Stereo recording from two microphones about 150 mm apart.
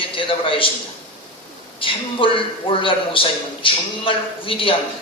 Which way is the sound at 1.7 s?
35° left (ahead or behind).